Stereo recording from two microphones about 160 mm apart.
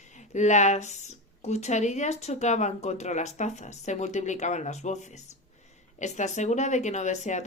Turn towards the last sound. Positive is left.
turn(degrees=50)  # may be behind; listen again after turning